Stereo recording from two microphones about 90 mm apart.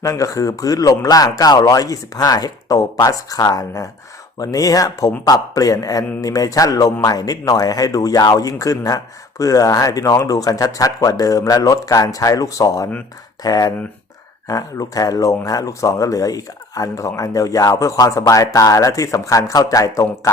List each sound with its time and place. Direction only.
0.0 s a man's voice: 40° left (ahead or behind)